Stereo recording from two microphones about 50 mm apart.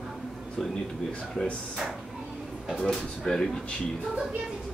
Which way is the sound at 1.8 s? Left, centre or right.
Centre.